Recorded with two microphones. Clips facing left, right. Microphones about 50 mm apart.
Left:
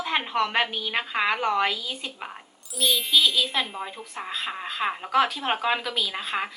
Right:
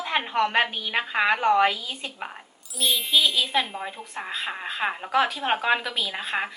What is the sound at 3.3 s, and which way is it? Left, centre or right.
A woman's voice, centre.